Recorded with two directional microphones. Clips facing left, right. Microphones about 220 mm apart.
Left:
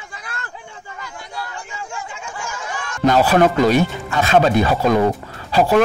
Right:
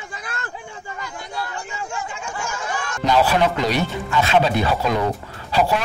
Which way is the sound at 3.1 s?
45° left (ahead or behind).